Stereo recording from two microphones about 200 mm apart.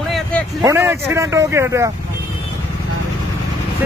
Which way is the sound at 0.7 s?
10° right (ahead or behind).